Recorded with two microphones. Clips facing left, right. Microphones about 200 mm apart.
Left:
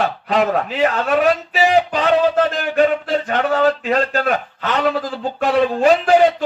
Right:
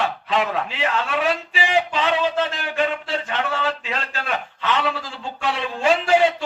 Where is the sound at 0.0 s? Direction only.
40° left (ahead or behind).